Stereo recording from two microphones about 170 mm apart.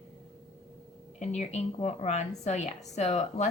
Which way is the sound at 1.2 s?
40° left (ahead or behind).